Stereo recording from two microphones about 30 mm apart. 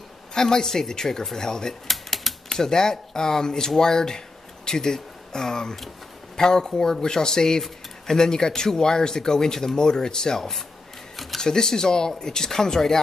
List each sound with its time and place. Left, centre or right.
0.3 s speech: left
1.9 s typewriter: centre
2.5 s speech: centre
11.1 s a sound: centre
11.4 s speech: centre